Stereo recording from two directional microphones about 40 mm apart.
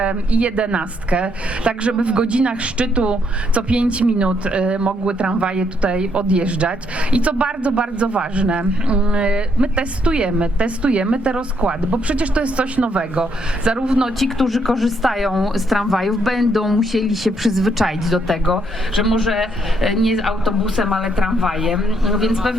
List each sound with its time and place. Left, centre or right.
0.0 s a woman's voice: right
14.2 s a woman's voice: centre
20.9 s a woman's voice: centre
21.4 s speech: centre